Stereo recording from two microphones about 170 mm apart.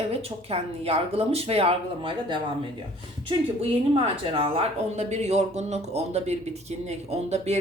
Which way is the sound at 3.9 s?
35° right (ahead or behind).